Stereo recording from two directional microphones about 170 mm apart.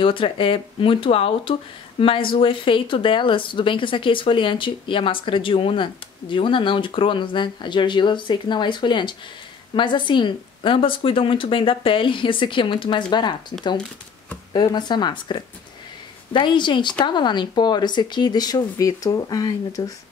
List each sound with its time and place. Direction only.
0.0 s speech: 30° left (ahead or behind)